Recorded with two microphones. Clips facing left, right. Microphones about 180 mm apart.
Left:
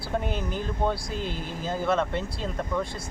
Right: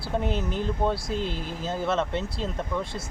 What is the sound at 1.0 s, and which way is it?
Speech, 30° right (ahead or behind).